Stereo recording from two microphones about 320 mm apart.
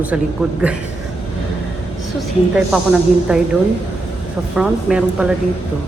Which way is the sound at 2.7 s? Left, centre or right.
Centre.